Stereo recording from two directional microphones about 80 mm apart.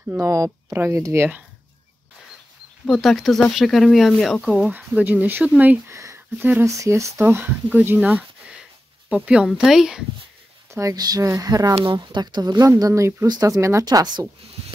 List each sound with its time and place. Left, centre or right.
0.2 s speech: right
0.7 s speech: right
2.9 s speech: centre
4.5 s speech: centre
4.7 s speech: right
5.9 s a sound: right
6.6 s speech: right; by 9.5 s centre
9.5 s speech: centre
10.7 s speech: right
11.8 s speech: right
12.6 s speech: right
13.3 s speech: right
13.6 s speech: right
13.8 s speech: right